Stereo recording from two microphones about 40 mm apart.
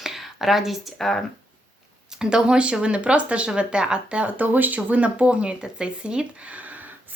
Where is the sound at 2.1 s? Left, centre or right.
Right.